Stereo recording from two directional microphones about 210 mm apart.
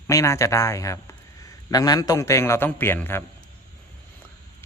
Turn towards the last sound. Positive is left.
turn(degrees=10)  # may be behind; listen again after turning